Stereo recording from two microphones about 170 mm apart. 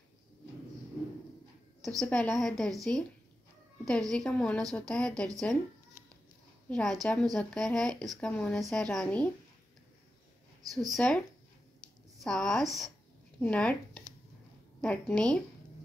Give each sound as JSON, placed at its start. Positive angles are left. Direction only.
{"t": 1.9, "sound": "a woman's voice", "side_deg": 5}
{"t": 4.1, "sound": "a woman's voice", "side_deg": 5}
{"t": 6.7, "sound": "a woman's voice", "side_deg": 0}
{"t": 10.6, "sound": "speech", "side_deg": -20}
{"t": 10.9, "sound": "a woman's voice", "side_deg": 5}